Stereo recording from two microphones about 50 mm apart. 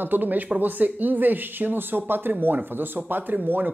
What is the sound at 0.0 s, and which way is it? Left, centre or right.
Speech, right.